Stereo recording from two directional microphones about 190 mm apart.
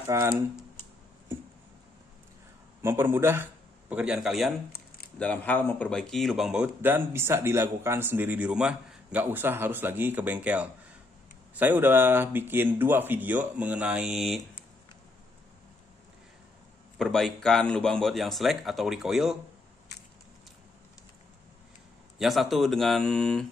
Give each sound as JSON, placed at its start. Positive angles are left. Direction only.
{"t": 0.0, "sound": "speech", "side_deg": -15}
{"t": 2.8, "sound": "speech", "side_deg": -10}
{"t": 17.0, "sound": "speech", "side_deg": 0}
{"t": 22.2, "sound": "speech", "side_deg": 0}